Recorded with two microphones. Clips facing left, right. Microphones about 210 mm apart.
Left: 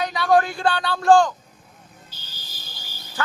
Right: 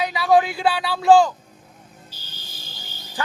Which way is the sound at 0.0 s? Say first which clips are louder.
Right 1 dB; 5° right (ahead or behind).